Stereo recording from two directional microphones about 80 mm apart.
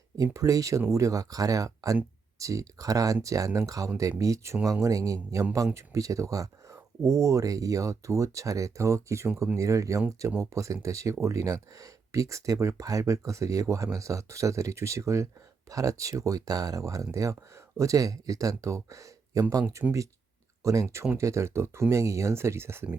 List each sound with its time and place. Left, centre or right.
0.2 s speech: right
21.2 s speech: right